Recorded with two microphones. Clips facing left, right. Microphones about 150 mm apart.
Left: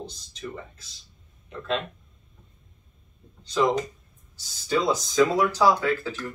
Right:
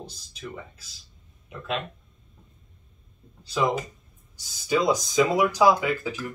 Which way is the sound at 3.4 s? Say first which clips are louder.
Left 2 dB; 5° right (ahead or behind).